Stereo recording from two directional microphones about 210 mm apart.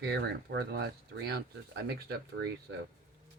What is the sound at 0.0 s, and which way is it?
Speech, 50° right (ahead or behind).